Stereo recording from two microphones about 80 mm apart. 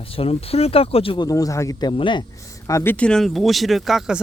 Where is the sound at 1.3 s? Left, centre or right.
Left.